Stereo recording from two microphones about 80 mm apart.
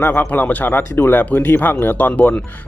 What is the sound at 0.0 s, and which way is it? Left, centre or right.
Speech, left.